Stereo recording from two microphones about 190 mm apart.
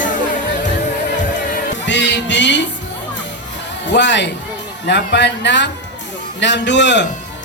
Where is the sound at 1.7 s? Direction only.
70° left (ahead or behind).